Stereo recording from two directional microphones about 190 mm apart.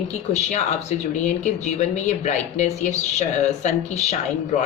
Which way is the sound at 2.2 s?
40° left (ahead or behind).